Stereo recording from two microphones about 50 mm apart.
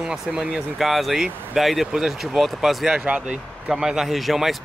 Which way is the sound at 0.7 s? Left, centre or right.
Centre.